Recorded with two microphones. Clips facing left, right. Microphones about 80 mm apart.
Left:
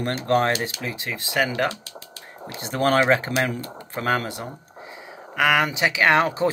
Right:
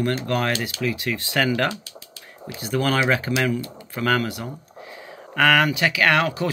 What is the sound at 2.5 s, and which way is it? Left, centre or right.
Speech, left.